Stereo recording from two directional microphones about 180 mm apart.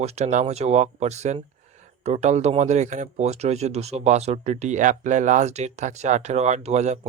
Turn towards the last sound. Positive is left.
turn(degrees=-40)  # may be behind; listen again after turning